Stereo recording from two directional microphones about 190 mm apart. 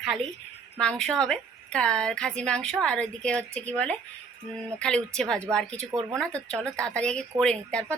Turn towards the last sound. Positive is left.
turn(degrees=5)  # may be behind; listen again after turning